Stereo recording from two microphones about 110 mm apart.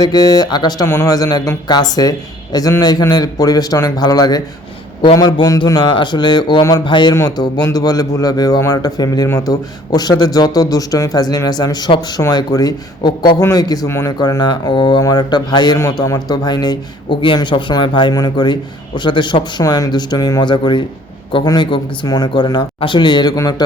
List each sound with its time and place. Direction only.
0.0 s a man's voice: 35° left (ahead or behind)
0.9 s a man's voice: 25° left (ahead or behind)
6.8 s speech: 45° left (ahead or behind)
7.1 s a man's voice: 35° left (ahead or behind)
14.2 s a man's voice: 40° left (ahead or behind)